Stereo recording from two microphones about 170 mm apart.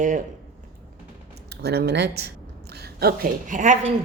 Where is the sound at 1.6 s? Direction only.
70° right (ahead or behind).